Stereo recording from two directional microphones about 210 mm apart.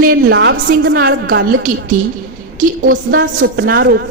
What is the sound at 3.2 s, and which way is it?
Speech, 55° right (ahead or behind).